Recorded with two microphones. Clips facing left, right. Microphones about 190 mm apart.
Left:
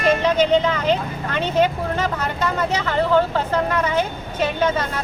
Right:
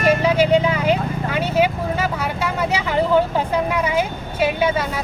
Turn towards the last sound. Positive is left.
turn(degrees=-10)  # may be behind; listen again after turning